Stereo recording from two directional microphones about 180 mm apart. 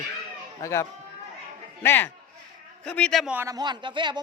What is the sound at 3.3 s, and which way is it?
Speech, 15° right (ahead or behind).